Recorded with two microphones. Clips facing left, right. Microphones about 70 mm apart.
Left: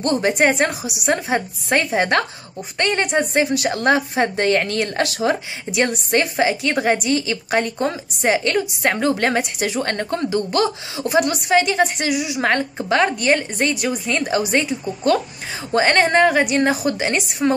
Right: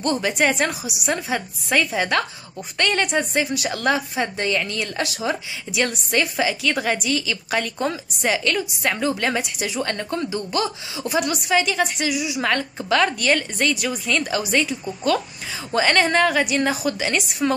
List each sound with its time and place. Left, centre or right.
0.0 s a woman's voice: left
2.8 s a woman's voice: left
3.3 s a woman's voice: left
5.7 s a woman's voice: left
11.1 s a woman's voice: left